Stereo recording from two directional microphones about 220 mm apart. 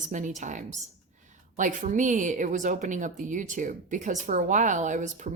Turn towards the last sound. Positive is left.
turn(degrees=-35)  # may be behind; listen again after turning